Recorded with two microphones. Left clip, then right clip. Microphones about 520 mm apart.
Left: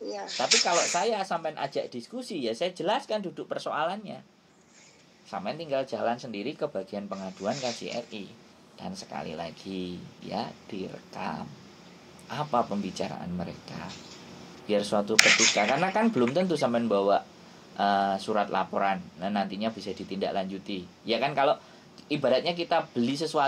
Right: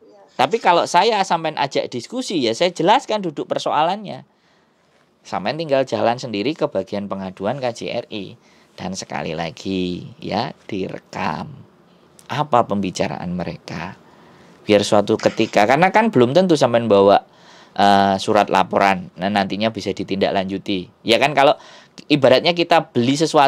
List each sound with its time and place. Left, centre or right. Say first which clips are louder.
0.4 s speech: right 9 dB; right
5.3 s speech: right 12 dB; right